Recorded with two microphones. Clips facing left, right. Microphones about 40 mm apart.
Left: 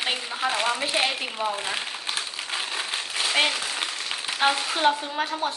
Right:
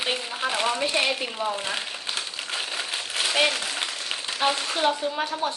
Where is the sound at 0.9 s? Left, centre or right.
Left.